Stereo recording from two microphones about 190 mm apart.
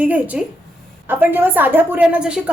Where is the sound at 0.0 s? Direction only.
10° right (ahead or behind).